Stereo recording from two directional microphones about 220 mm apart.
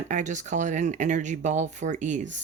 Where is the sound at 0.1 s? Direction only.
35° right (ahead or behind).